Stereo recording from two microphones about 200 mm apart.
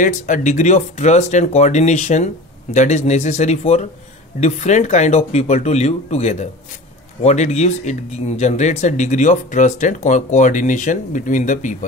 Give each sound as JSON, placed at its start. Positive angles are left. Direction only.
{"t": 0.0, "sound": "speech", "side_deg": 40}